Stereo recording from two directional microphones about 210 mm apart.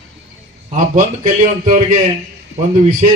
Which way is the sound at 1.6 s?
35° right (ahead or behind).